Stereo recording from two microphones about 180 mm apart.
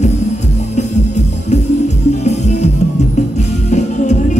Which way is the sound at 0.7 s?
40° left (ahead or behind).